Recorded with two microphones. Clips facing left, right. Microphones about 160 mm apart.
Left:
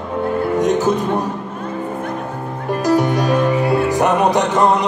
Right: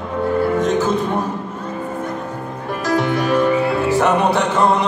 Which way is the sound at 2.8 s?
15° left (ahead or behind).